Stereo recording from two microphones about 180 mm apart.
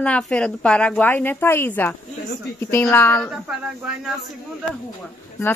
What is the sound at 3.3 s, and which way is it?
Speech, 5° right (ahead or behind).